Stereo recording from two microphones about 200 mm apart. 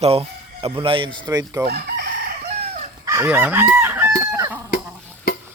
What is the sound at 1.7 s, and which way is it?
Chicken, 50° right (ahead or behind).